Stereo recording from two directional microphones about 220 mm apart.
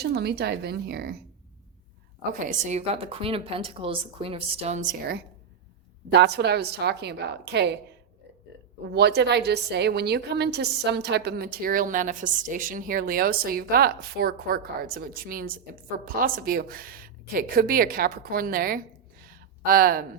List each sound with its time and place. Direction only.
0.0 s a woman's voice: 45° right (ahead or behind)
2.4 s a woman's voice: 35° right (ahead or behind)
6.1 s a woman's voice: 50° right (ahead or behind)
8.9 s a woman's voice: 50° right (ahead or behind)
19.2 s a sound: 40° right (ahead or behind)